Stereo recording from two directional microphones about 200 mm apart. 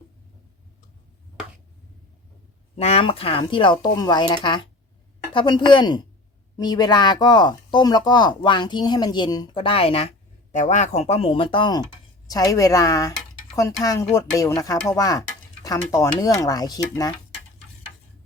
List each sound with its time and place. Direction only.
2.7 s speech: 30° left (ahead or behind)